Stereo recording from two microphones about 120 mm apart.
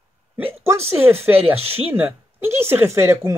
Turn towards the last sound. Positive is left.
turn(degrees=-20)  # may be behind; listen again after turning